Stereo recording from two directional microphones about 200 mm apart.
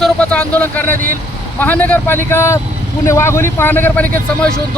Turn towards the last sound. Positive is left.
turn(degrees=10)  # may be behind; listen again after turning